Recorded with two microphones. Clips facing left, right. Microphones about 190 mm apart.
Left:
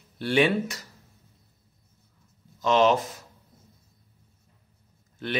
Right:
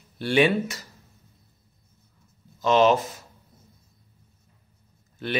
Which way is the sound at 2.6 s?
5° right (ahead or behind).